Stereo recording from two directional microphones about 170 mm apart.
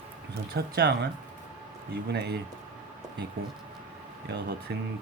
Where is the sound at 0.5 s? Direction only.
65° right (ahead or behind).